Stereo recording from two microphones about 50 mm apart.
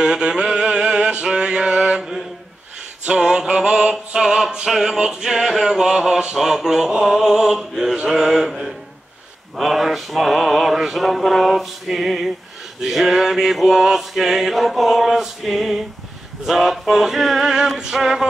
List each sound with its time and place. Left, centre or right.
0.0 s a sound: centre
3.1 s music: centre
4.1 s male singing: centre